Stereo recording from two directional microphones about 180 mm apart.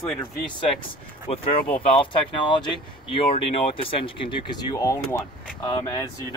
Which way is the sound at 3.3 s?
35° left (ahead or behind).